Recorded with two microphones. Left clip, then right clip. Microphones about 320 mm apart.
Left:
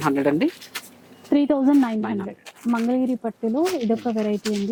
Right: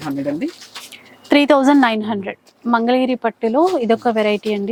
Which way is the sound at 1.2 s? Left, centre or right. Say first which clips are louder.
Right 7 dB; centre.